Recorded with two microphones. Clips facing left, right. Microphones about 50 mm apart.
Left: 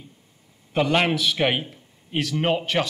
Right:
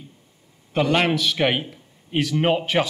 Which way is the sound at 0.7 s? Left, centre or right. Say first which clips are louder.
Right 1 dB; centre.